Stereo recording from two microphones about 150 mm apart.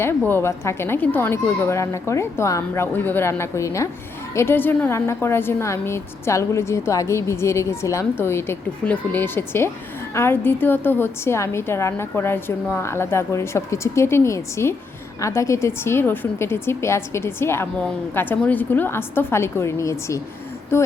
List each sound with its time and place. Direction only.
0.2 s a woman's voice: 15° left (ahead or behind)